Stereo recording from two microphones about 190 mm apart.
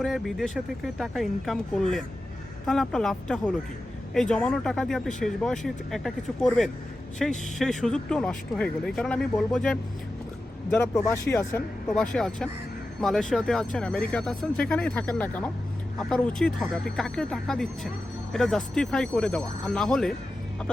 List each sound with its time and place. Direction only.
0.0 s a man's voice: centre (ahead or behind)